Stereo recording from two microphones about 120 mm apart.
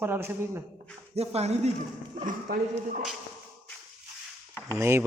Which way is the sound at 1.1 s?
55° right (ahead or behind).